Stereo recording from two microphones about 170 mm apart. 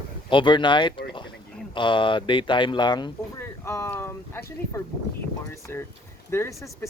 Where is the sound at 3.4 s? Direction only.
15° left (ahead or behind).